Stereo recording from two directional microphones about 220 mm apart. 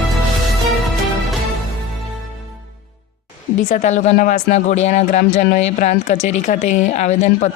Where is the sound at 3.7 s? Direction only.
35° left (ahead or behind).